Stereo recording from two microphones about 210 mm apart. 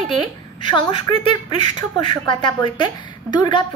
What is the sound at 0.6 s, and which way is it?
A woman's voice, 20° left (ahead or behind).